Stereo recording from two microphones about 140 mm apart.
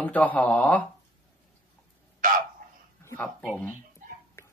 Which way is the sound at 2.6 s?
90° right.